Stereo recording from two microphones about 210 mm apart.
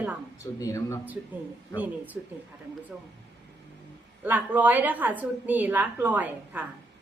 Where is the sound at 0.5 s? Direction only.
15° left (ahead or behind).